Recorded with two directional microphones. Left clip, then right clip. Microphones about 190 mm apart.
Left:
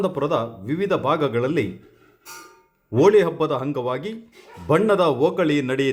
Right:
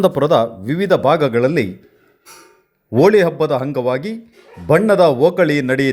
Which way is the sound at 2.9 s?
15° right (ahead or behind).